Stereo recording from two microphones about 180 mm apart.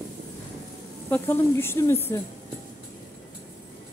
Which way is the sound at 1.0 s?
10° left (ahead or behind).